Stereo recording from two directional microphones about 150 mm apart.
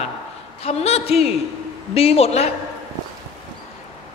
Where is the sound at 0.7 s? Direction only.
45° left (ahead or behind).